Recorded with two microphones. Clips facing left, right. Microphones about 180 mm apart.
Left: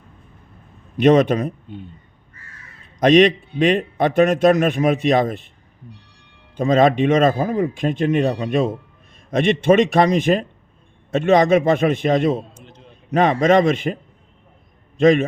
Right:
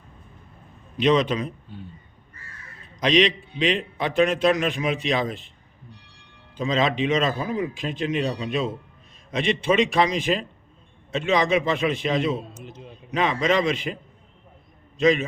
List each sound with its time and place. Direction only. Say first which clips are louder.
1.0 s a man's voice: left 6 dB; 55° left (ahead or behind)
3.0 s a man's voice: left 7 dB; 50° left (ahead or behind)
6.6 s a man's voice: left 8 dB; 50° left (ahead or behind)
12.5 s a sound: right 4 dB; 5° right (ahead or behind)
13.1 s a man's voice: left 7 dB; 50° left (ahead or behind)